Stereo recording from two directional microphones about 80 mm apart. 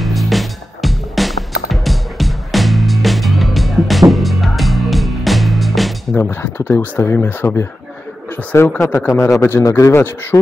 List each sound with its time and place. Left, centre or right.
0.0 s music: centre
6.1 s a man's voice: left
10.3 s a man's voice: left